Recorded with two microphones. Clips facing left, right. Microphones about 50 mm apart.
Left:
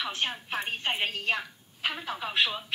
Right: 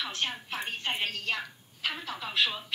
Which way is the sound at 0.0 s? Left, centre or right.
Centre.